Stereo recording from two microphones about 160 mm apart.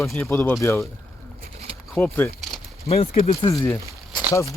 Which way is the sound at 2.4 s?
Centre (ahead or behind).